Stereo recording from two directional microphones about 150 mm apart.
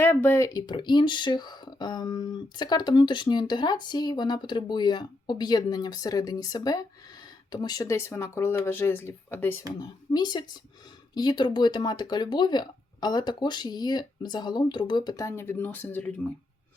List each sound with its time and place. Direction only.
0.0 s speech: 15° left (ahead or behind)
10.1 s speech: 30° left (ahead or behind); by 16.2 s 10° left (ahead or behind)